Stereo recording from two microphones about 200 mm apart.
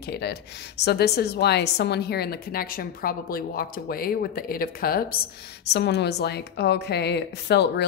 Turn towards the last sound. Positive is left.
turn(degrees=55)  # may be behind; listen again after turning